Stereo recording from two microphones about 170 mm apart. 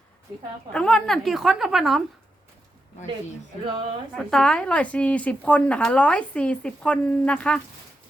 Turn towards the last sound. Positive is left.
turn(degrees=5)  # may be behind; listen again after turning